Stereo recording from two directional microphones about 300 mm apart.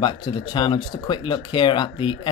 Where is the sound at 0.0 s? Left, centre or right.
Centre.